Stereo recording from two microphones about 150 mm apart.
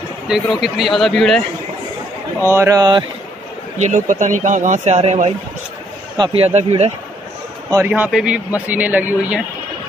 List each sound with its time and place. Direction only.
0.3 s a man's voice: centre (ahead or behind)
2.4 s speech: 15° right (ahead or behind)
3.7 s speech: 55° right (ahead or behind)
6.1 s speech: 35° right (ahead or behind)
7.8 s a man's voice: 10° right (ahead or behind)